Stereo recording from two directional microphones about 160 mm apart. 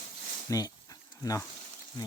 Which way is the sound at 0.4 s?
25° left (ahead or behind).